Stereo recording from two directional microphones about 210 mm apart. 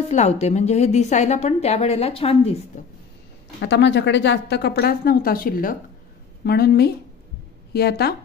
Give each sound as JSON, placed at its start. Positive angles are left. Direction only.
{"t": 0.1, "sound": "a woman's voice", "side_deg": 30}
{"t": 3.6, "sound": "a woman's voice", "side_deg": 55}